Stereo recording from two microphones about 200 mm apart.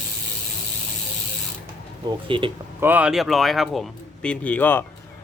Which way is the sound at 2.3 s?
25° right (ahead or behind).